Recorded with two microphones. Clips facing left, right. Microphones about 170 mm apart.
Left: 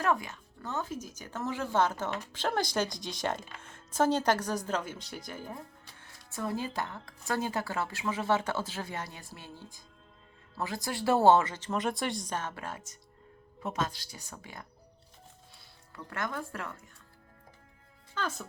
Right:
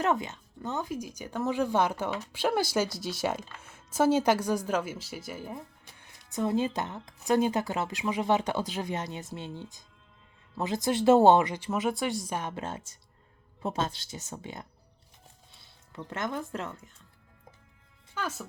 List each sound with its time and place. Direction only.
0.0 s speech: 20° right (ahead or behind)
15.9 s speech: 20° right (ahead or behind)
18.1 s speech: 10° right (ahead or behind)